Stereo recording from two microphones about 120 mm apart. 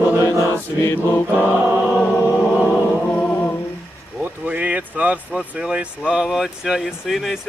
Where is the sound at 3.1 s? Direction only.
15° left (ahead or behind).